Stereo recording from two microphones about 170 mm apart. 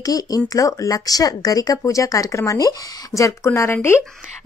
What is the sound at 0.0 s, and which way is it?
Speech, 20° left (ahead or behind).